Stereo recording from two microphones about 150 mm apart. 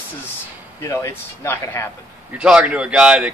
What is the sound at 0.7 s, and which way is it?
Speech, 20° left (ahead or behind).